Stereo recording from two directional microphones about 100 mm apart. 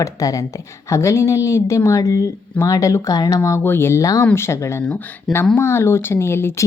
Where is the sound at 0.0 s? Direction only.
35° left (ahead or behind).